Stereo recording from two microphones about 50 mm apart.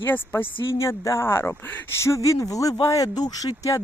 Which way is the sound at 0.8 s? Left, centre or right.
Left.